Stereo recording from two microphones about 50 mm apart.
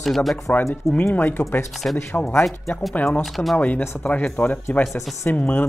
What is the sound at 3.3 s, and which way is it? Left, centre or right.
Speech, centre.